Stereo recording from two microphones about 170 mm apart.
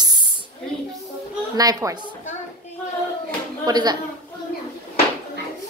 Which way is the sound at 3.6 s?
25° right (ahead or behind).